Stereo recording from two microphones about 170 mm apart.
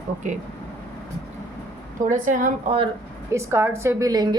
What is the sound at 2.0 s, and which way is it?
Speech, 50° right (ahead or behind).